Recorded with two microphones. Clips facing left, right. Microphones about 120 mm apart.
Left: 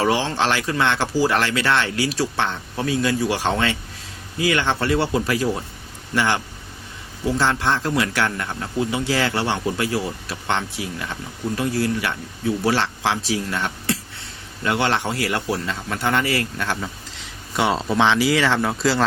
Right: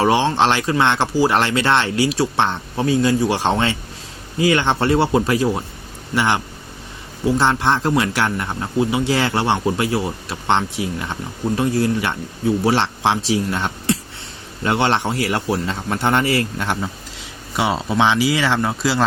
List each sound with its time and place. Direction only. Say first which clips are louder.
0.0 s speech: right 4 dB; 25° right (ahead or behind)
17.6 s speech: right 1 dB; 5° right (ahead or behind)